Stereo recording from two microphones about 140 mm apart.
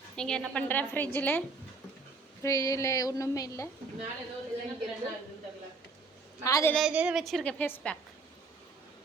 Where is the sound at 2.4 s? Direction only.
20° left (ahead or behind).